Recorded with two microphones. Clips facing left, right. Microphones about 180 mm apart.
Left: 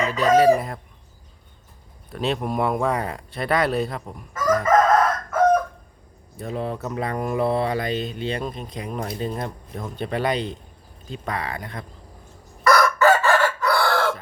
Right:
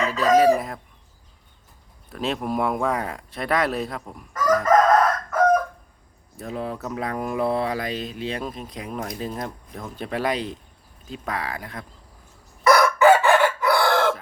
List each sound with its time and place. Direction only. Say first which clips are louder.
0.0 s chicken: left 1 dB; centre (ahead or behind)
2.0 s speech: left 1 dB; centre (ahead or behind)
6.3 s speech: left 2 dB; centre (ahead or behind)
12.6 s chicken: right 2 dB; 15° right (ahead or behind)